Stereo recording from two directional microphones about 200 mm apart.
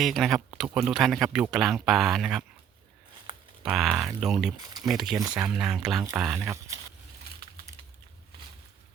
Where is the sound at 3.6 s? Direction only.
5° right (ahead or behind).